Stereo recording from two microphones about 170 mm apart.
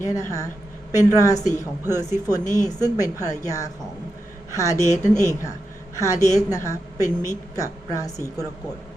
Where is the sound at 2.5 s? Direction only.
20° left (ahead or behind).